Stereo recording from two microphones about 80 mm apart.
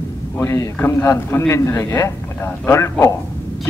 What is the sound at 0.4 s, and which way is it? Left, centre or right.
Speech, left.